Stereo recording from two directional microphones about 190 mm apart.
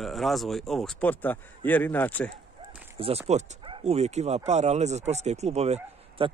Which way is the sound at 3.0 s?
30° right (ahead or behind).